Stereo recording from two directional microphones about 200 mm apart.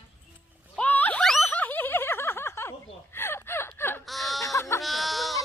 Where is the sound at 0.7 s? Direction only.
10° left (ahead or behind).